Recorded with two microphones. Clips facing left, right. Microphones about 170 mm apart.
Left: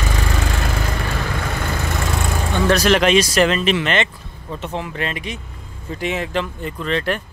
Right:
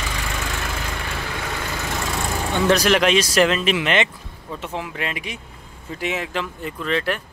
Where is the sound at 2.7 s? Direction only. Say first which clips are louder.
Left 3 dB; 10° right (ahead or behind).